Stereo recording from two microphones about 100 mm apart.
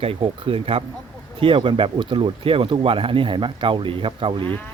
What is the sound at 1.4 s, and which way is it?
Speech, 60° right (ahead or behind).